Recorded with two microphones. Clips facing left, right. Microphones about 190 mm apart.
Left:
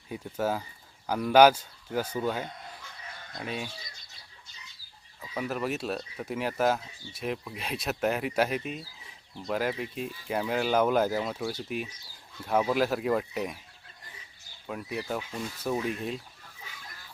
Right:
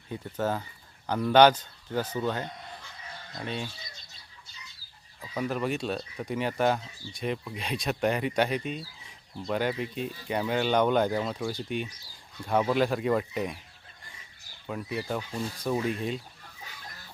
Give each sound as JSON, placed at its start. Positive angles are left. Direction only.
{"t": 0.1, "sound": "speech", "side_deg": 10}
{"t": 5.2, "sound": "speech", "side_deg": 5}
{"t": 14.7, "sound": "speech", "side_deg": 5}
{"t": 15.2, "sound": "speech", "side_deg": -35}
{"t": 15.6, "sound": "speech", "side_deg": 0}